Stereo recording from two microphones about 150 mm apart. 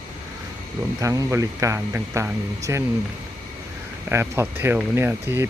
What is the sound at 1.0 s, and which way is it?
Speech, 25° right (ahead or behind).